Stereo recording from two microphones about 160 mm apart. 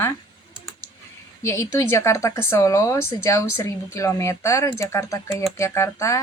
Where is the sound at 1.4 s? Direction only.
15° left (ahead or behind).